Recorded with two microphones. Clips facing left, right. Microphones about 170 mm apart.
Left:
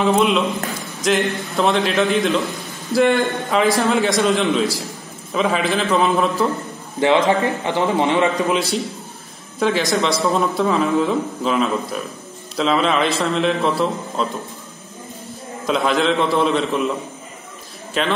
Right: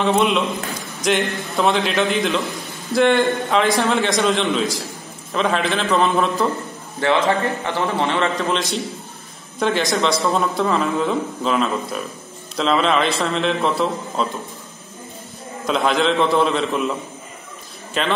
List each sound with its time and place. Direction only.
0.0 s speech: centre (ahead or behind)
7.0 s a man's voice: 15° left (ahead or behind)
9.6 s speech: centre (ahead or behind)
15.6 s speech: centre (ahead or behind)
17.9 s speech: centre (ahead or behind)